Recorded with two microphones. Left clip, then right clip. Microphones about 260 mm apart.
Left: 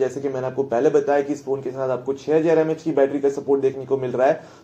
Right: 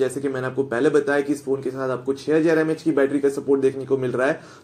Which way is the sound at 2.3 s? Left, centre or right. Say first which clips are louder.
Left 1 dB; right.